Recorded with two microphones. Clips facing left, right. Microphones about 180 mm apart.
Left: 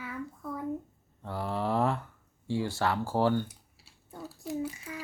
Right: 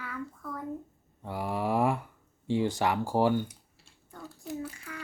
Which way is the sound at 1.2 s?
10° right (ahead or behind).